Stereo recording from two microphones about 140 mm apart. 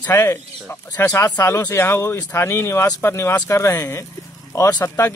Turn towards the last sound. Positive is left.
turn(degrees=15)  # may be behind; listen again after turning